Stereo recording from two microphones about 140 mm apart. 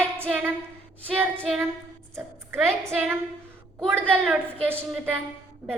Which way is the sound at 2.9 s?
15° right (ahead or behind).